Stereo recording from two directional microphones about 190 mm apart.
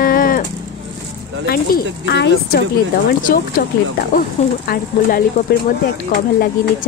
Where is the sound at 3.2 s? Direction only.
50° left (ahead or behind).